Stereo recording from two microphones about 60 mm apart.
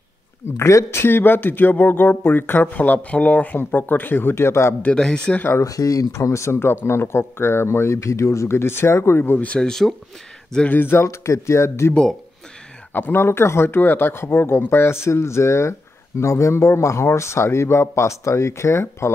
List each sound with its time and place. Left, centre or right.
0.6 s speech: left
0.8 s speech: left
4.9 s speech: centre
5.6 s speech: left
9.6 s speech: centre
10.6 s speech: left
11.9 s speech: centre
12.9 s speech: left